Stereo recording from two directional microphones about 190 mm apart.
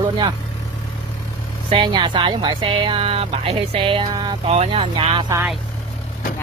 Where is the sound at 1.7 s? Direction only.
25° right (ahead or behind).